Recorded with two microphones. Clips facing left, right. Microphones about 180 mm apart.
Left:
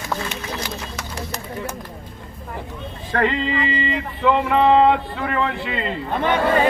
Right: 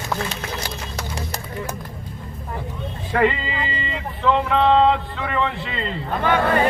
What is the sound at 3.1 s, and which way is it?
Speech, 10° right (ahead or behind).